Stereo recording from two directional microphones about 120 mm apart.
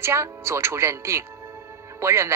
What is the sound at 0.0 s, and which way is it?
Speech, 20° right (ahead or behind).